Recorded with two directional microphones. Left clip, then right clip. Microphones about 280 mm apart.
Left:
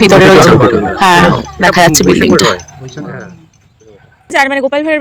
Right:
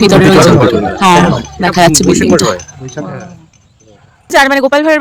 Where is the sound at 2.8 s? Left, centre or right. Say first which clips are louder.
Right 3 dB; centre.